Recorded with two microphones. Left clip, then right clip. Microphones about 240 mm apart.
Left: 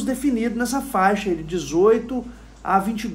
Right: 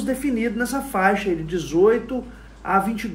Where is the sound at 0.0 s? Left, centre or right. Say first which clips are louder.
Even; centre.